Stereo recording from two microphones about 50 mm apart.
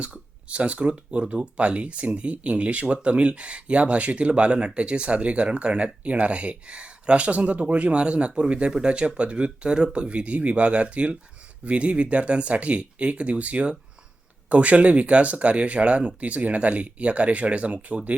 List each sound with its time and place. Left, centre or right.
0.0 s speech: right